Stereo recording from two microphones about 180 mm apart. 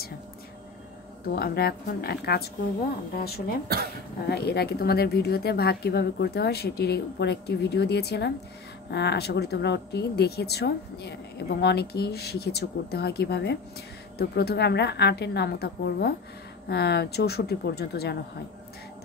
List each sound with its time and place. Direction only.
1.2 s speech: 60° left (ahead or behind)